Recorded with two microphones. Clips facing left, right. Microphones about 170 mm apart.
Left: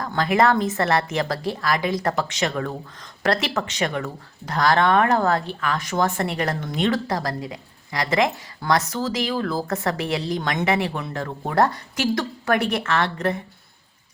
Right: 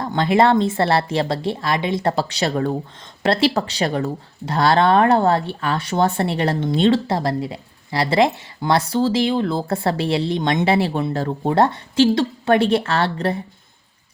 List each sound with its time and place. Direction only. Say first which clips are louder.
0.0 s speech: right 3 dB; 25° right (ahead or behind)